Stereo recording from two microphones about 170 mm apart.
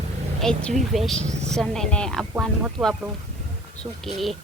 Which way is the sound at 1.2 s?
40° right (ahead or behind).